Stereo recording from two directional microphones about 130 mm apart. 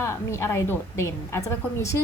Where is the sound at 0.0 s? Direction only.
20° left (ahead or behind).